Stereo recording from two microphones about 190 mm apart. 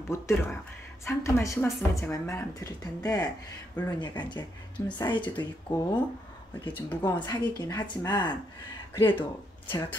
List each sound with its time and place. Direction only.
0.1 s a woman's voice: 15° left (ahead or behind)
7.0 s a woman's voice: 20° left (ahead or behind)
8.9 s speech: 10° left (ahead or behind)
9.2 s speech: 25° left (ahead or behind)